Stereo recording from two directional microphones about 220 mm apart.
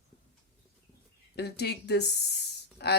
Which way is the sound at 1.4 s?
50° left (ahead or behind).